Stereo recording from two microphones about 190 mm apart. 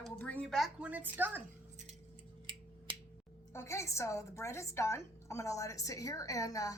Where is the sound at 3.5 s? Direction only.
15° left (ahead or behind).